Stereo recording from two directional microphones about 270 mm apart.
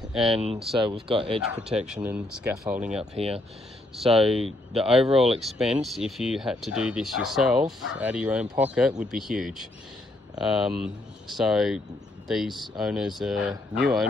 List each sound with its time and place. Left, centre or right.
0.1 s speech: centre
0.7 s speech: centre
1.5 s speech: centre
3.2 s speech: right
4.0 s speech: centre